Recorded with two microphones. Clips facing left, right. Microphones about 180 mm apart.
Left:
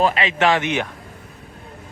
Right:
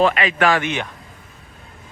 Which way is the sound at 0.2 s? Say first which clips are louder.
Even; 25° left (ahead or behind).